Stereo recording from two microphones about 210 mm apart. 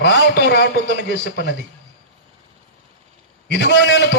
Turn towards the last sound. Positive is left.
turn(degrees=55)  # may be behind; listen again after turning